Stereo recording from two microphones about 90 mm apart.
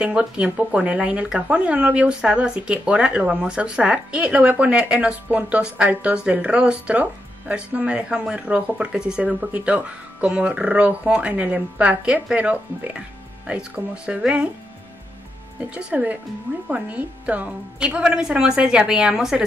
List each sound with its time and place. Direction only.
0.0 s speech: 10° right (ahead or behind)
15.7 s speech: 15° right (ahead or behind)